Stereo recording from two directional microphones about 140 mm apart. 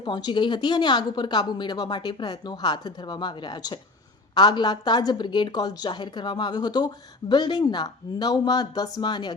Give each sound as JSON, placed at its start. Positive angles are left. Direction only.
{"t": 0.0, "sound": "a woman's voice", "side_deg": 35}